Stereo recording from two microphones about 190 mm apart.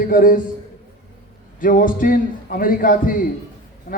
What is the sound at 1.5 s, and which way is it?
Speech, 45° left (ahead or behind).